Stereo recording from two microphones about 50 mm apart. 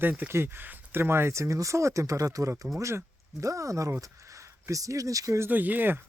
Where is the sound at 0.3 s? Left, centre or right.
Right.